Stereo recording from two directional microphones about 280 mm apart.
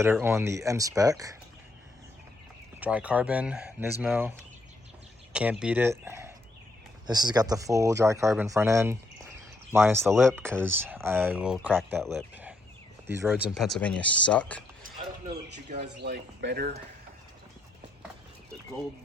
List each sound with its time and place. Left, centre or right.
0.0 s speech: centre
2.8 s speech: centre
5.3 s speech: centre
15.5 s speech: right
16.0 s speech: right